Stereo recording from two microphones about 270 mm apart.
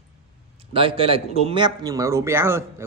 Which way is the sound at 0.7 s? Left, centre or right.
Centre.